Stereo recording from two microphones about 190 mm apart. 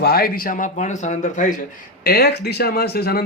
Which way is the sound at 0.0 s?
55° left (ahead or behind).